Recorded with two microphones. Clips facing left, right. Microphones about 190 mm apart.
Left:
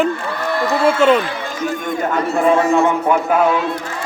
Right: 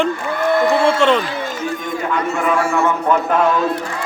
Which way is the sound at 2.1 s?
35° left (ahead or behind).